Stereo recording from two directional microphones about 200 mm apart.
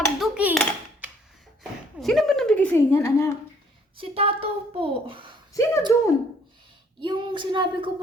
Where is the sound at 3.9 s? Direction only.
30° right (ahead or behind).